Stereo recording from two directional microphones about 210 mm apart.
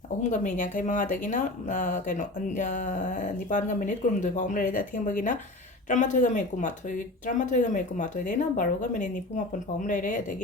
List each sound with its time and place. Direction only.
0.2 s speech: 35° left (ahead or behind)